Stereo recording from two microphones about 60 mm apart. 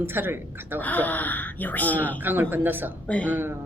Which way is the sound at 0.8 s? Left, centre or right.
Left.